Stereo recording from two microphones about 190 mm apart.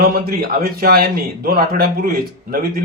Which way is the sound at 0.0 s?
55° right (ahead or behind).